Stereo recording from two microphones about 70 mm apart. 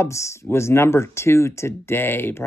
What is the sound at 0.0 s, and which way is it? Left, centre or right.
Speech, left.